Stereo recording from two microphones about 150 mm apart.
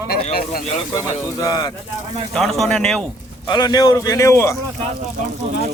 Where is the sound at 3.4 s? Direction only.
30° left (ahead or behind).